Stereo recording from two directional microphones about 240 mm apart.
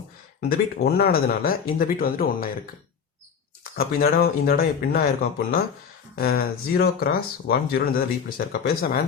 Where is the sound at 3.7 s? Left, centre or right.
Left.